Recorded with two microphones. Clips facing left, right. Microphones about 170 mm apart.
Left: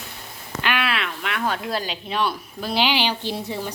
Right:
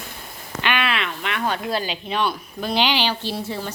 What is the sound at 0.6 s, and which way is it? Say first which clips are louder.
Speech: right 1 dB; centre (ahead or behind).